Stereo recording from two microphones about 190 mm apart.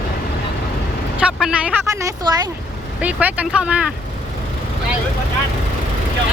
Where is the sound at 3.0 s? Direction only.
10° right (ahead or behind).